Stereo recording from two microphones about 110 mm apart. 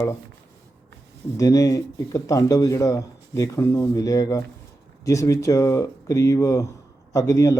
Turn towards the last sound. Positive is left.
turn(degrees=30)  # may be behind; listen again after turning